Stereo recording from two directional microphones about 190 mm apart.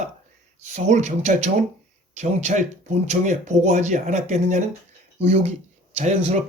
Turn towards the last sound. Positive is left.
turn(degrees=-35)  # may be behind; listen again after turning